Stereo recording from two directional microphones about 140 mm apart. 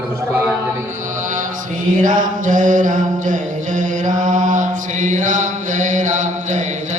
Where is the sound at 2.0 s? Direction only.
70° right (ahead or behind).